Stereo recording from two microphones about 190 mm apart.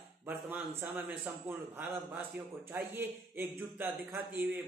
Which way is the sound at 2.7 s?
10° right (ahead or behind).